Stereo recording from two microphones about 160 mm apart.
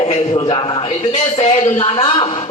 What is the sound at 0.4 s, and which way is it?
A man's voice, 35° left (ahead or behind).